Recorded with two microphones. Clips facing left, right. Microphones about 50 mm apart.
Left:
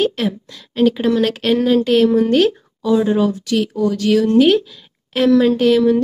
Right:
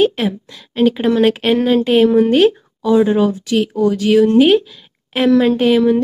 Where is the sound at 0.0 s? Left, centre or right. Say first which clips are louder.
Right 3 dB; centre.